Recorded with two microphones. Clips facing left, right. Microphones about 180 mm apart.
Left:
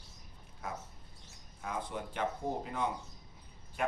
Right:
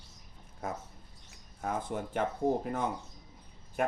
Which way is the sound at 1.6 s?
50° right (ahead or behind).